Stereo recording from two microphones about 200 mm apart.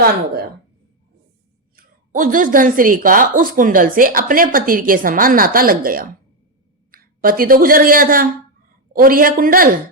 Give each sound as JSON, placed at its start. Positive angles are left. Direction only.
{"t": 1.7, "sound": "speech", "side_deg": -45}